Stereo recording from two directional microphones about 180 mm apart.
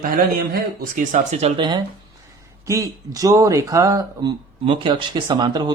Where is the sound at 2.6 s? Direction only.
15° right (ahead or behind).